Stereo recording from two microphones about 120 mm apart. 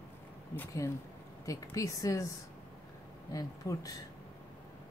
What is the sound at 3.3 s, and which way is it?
Speech, 30° left (ahead or behind).